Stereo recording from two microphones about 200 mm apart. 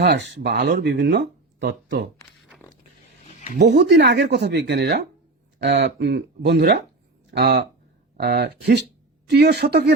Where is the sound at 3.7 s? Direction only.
55° right (ahead or behind).